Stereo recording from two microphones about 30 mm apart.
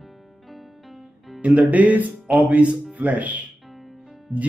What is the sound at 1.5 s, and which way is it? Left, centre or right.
Speech, right.